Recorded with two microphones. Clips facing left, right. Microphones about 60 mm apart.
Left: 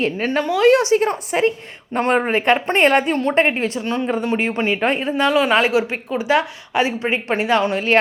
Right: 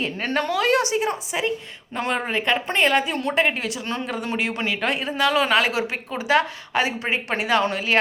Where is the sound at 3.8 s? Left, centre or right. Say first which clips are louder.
Left 7 dB; left.